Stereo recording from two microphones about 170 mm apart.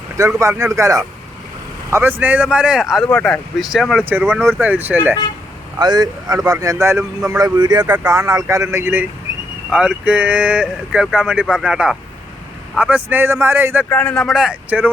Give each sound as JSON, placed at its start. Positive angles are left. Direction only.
{"t": 0.3, "sound": "speech", "side_deg": -15}
{"t": 5.8, "sound": "speech", "side_deg": -25}
{"t": 7.9, "sound": "speech", "side_deg": -10}
{"t": 13.9, "sound": "speech", "side_deg": 10}